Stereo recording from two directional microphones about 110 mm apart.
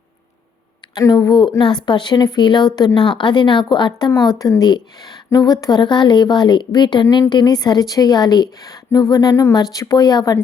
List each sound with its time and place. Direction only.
1.0 s a woman's voice: 30° left (ahead or behind)